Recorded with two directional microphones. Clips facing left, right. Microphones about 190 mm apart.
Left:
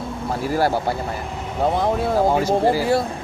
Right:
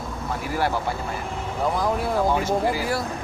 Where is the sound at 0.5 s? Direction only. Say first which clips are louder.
Left 5 dB; 35° left (ahead or behind).